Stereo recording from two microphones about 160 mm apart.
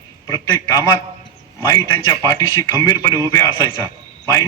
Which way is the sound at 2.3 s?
20° left (ahead or behind).